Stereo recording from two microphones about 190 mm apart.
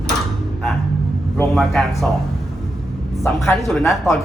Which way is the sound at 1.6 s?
Centre (ahead or behind).